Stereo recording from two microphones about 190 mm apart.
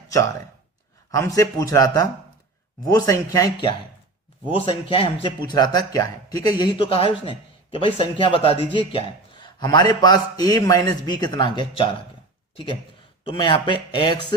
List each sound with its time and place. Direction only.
0.1 s speech: 15° left (ahead or behind)
13.3 s speech: 25° left (ahead or behind)